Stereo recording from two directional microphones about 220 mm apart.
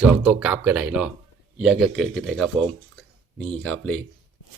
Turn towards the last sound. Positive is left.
turn(degrees=5)  # may be behind; listen again after turning